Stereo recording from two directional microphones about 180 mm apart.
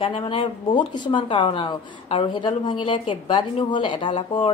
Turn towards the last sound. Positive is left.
turn(degrees=25)  # may be behind; listen again after turning